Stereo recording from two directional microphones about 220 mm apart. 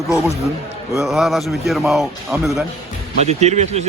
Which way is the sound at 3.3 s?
30° right (ahead or behind).